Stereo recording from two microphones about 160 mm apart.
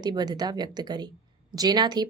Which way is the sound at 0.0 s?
25° right (ahead or behind).